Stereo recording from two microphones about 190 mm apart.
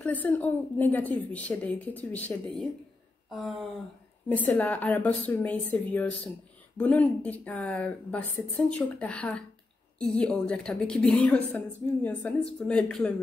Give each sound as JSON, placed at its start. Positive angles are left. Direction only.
{"t": 0.0, "sound": "a woman's voice", "side_deg": 10}
{"t": 4.3, "sound": "a woman's voice", "side_deg": 10}